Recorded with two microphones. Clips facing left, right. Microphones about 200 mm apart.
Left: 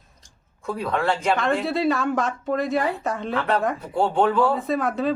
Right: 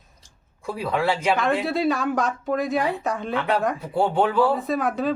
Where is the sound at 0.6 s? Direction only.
5° right (ahead or behind).